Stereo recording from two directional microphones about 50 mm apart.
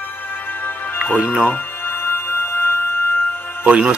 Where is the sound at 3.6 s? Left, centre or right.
Right.